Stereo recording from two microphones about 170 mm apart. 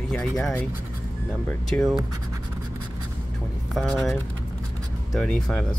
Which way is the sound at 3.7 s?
Centre (ahead or behind).